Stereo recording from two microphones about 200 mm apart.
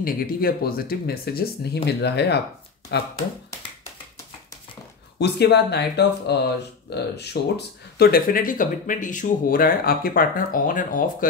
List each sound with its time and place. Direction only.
0.0 s speech: 50° left (ahead or behind)
5.2 s speech: 55° left (ahead or behind)